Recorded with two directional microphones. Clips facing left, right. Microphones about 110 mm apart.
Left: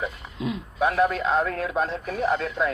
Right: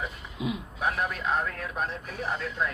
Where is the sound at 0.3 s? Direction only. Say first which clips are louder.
Left 2 dB; 10° right (ahead or behind).